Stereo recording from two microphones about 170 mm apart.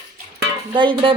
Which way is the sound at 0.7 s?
30° right (ahead or behind).